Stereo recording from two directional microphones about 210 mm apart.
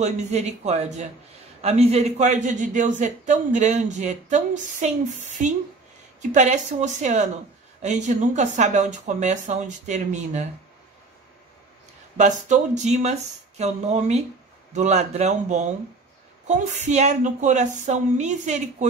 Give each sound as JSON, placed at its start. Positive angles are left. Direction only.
{"t": 0.0, "sound": "a man's voice", "side_deg": -35}
{"t": 6.3, "sound": "a man's voice", "side_deg": -35}
{"t": 12.2, "sound": "a man's voice", "side_deg": -35}